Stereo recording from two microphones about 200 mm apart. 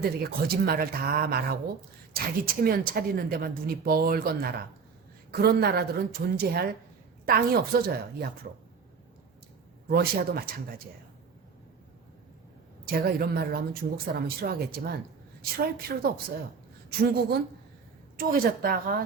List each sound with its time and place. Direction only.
0.0 s a woman's voice: 50° right (ahead or behind)
9.9 s a woman's voice: 50° right (ahead or behind)
12.8 s a woman's voice: 50° right (ahead or behind)